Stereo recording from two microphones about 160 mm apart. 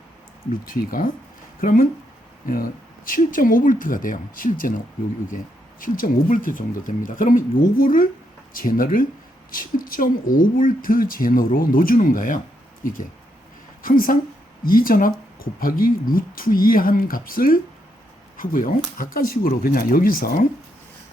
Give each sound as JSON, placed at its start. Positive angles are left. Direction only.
{"t": 0.6, "sound": "speech", "side_deg": 60}
{"t": 3.1, "sound": "speech", "side_deg": 60}
{"t": 5.8, "sound": "speech", "side_deg": 60}